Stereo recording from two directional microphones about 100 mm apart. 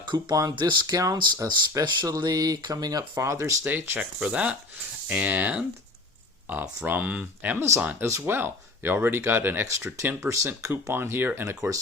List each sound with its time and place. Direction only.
0.1 s speech: 40° right (ahead or behind)
1.8 s speech: 45° right (ahead or behind)
3.6 s speech: 20° right (ahead or behind)
8.0 s speech: 25° right (ahead or behind)
11.4 s speech: 30° right (ahead or behind)